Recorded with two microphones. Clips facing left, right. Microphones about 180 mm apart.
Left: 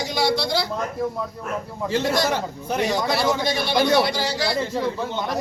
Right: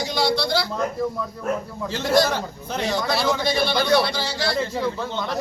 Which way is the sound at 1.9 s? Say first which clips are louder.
Right 1 dB; 15° left (ahead or behind).